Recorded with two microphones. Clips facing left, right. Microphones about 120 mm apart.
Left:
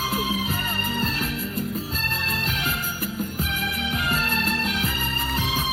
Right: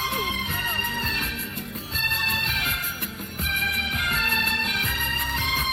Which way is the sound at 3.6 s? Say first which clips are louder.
Left 3 dB; centre (ahead or behind).